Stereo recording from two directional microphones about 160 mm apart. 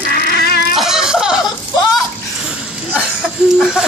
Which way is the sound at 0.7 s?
Centre (ahead or behind).